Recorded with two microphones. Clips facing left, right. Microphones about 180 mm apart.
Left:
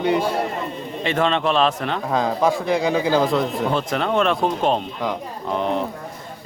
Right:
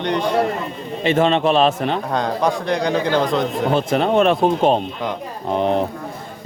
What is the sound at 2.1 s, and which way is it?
Speech, centre (ahead or behind).